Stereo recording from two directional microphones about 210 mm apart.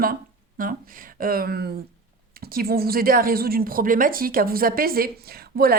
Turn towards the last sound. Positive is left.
turn(degrees=-45)  # may be behind; listen again after turning